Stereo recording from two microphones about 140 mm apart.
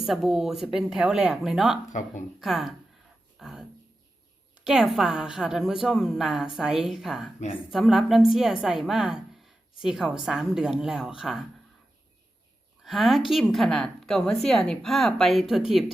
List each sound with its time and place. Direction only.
0.0 s speech: centre (ahead or behind)
1.9 s speech: 60° left (ahead or behind)
2.4 s speech: centre (ahead or behind)
3.3 s a sound: 5° right (ahead or behind)
4.6 s speech: 5° right (ahead or behind)
7.3 s a woman's voice: 45° left (ahead or behind)
7.7 s speech: centre (ahead or behind)
12.8 s speech: centre (ahead or behind)